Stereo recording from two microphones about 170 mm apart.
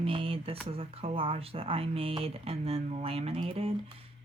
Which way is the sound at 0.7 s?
35° right (ahead or behind).